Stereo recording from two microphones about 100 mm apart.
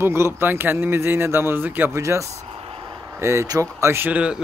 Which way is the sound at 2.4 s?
80° right.